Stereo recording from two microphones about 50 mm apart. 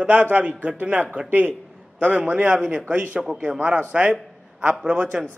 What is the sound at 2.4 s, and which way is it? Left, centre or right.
Speech, right.